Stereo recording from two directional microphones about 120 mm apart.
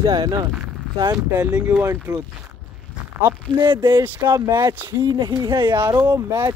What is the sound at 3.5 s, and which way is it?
Speech, 40° right (ahead or behind).